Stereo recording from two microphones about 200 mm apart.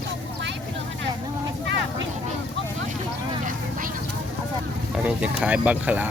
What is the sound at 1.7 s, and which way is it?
Vehicle, 65° right (ahead or behind).